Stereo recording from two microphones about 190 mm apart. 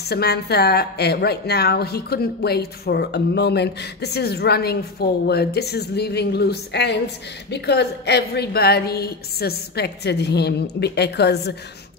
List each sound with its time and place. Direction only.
0.1 s a woman's voice: 60° left (ahead or behind)